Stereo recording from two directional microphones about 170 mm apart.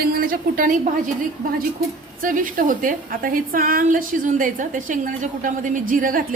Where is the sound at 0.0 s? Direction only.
60° right (ahead or behind).